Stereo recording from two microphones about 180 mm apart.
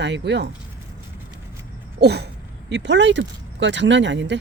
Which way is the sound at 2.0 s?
65° right (ahead or behind).